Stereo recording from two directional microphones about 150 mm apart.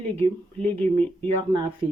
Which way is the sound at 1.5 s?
35° right (ahead or behind).